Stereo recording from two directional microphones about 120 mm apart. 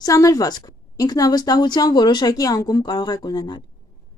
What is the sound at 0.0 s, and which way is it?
Speech, 30° left (ahead or behind).